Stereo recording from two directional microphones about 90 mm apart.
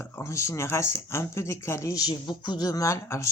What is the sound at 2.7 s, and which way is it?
Speech, 35° left (ahead or behind).